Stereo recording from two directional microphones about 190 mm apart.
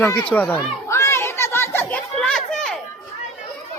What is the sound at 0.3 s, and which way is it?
Children playing, 10° left (ahead or behind).